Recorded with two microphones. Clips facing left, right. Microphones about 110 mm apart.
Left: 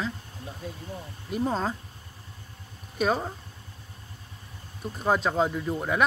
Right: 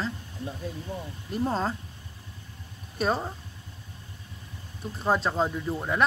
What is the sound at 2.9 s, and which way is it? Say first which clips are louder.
Speech: left 1 dB; 5° left (ahead or behind).